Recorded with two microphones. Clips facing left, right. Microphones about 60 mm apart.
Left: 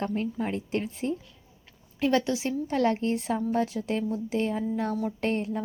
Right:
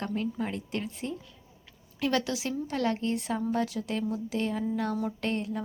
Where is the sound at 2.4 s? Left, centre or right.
Left.